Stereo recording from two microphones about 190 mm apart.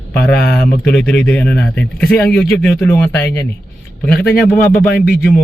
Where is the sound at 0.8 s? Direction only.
5° left (ahead or behind).